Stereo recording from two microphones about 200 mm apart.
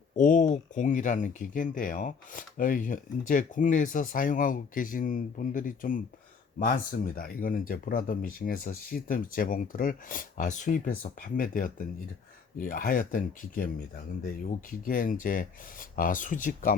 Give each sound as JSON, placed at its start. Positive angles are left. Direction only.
{"t": 0.2, "sound": "speech", "side_deg": 40}